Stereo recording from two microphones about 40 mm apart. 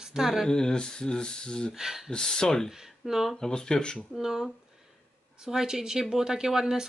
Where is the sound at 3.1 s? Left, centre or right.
Centre.